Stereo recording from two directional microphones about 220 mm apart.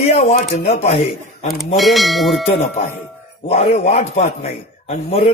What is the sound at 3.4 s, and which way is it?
A man's voice, 30° left (ahead or behind).